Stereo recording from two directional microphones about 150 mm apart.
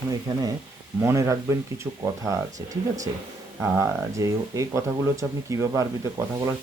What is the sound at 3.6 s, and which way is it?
Speech, 20° right (ahead or behind).